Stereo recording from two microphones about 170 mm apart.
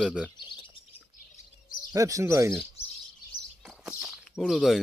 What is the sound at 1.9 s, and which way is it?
Speech, 20° right (ahead or behind).